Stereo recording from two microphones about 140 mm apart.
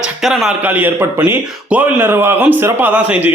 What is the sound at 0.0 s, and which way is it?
Speech, centre (ahead or behind).